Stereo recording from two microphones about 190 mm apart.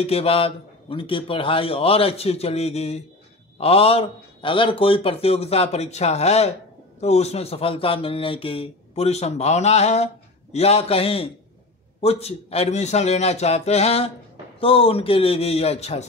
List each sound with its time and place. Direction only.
0.0 s a man's voice: 30° left (ahead or behind)